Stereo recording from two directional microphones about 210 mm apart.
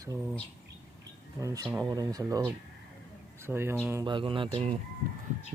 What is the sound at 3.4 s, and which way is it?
Speech, 10° right (ahead or behind).